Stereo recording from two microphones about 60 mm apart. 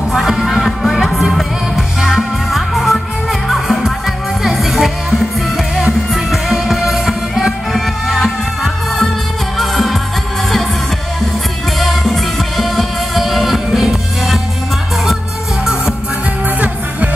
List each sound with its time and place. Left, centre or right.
0.1 s music: centre
9.6 s music: centre
11.8 s music: centre
15.6 s music: centre
16.4 s music: right